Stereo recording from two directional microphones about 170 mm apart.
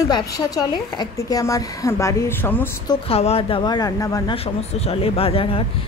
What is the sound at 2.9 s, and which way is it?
A woman's voice, 35° left (ahead or behind).